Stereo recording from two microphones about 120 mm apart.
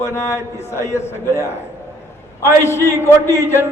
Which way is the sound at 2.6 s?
20° left (ahead or behind).